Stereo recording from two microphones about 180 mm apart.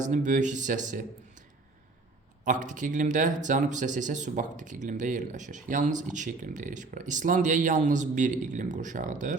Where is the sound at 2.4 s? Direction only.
45° right (ahead or behind).